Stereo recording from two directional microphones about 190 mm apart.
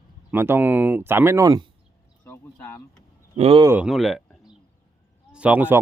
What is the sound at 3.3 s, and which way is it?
Speech, 30° right (ahead or behind).